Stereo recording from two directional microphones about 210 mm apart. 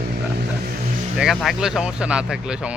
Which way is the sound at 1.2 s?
Centre (ahead or behind).